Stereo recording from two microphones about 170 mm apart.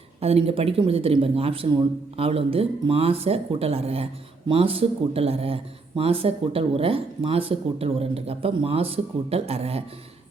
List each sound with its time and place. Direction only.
0.2 s speech: 35° right (ahead or behind)